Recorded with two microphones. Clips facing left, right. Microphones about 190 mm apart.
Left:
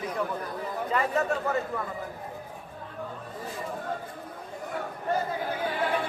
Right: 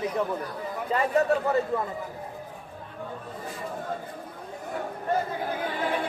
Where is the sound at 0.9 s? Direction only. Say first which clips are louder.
Right 4 dB; 35° right (ahead or behind).